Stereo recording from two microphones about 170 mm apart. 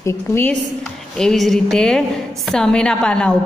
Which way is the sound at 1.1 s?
5° left (ahead or behind).